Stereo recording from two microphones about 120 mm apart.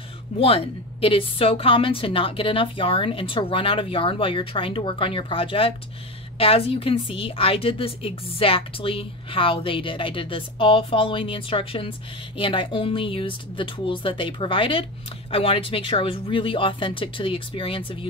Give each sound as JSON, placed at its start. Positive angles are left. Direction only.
{"t": 0.4, "sound": "a woman's voice", "side_deg": 50}